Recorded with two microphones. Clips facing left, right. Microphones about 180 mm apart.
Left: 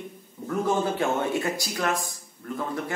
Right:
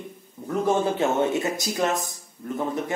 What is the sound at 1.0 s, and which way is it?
Speech, 20° right (ahead or behind).